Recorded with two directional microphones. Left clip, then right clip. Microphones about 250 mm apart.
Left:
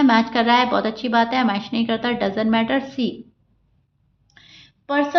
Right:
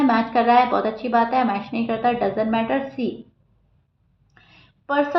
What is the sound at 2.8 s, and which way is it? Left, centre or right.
Speech, left.